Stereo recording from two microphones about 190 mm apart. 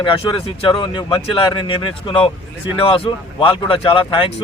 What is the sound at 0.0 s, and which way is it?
Speech, 25° left (ahead or behind).